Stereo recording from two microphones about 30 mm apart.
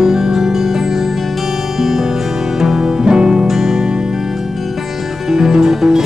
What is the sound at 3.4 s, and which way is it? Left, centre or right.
Music, centre.